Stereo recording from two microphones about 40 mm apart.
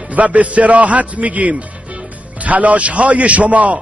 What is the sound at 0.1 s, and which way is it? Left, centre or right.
A man's voice, right.